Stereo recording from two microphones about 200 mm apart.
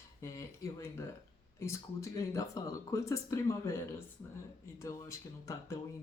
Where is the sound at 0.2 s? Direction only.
15° left (ahead or behind).